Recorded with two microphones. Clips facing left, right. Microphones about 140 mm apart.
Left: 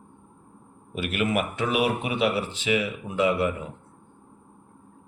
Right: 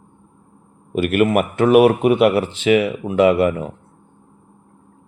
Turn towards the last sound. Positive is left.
turn(degrees=-70)  # may be behind; listen again after turning